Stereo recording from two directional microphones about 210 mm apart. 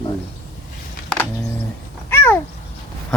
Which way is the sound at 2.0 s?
10° left (ahead or behind).